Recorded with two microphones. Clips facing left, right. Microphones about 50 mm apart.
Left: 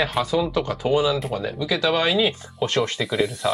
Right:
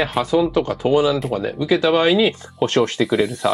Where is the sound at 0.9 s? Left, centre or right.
Right.